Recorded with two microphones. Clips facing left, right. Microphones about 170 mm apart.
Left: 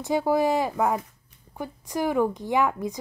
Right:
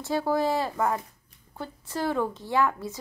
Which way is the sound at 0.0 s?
15° left (ahead or behind).